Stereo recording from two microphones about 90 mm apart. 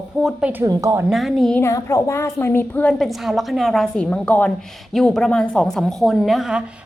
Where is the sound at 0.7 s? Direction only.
40° right (ahead or behind).